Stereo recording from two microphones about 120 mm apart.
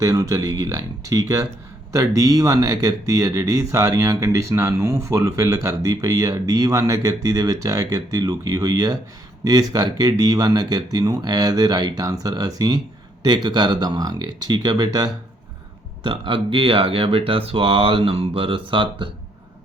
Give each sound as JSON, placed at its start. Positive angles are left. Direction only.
{"t": 0.0, "sound": "speech", "side_deg": -30}
{"t": 16.0, "sound": "speech", "side_deg": -45}